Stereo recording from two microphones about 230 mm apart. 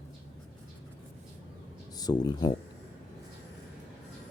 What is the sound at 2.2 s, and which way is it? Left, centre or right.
Speech, centre.